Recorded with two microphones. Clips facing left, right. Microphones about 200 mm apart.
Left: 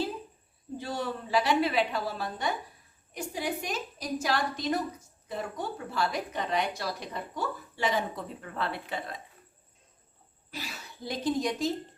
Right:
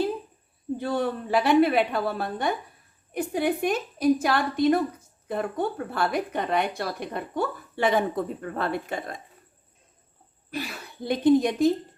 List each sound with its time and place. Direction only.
0.8 s a woman's voice: 55° right (ahead or behind)
10.5 s a woman's voice: 60° right (ahead or behind)